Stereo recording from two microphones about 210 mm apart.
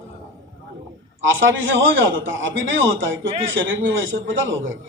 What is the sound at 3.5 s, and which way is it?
Speech, 65° right (ahead or behind).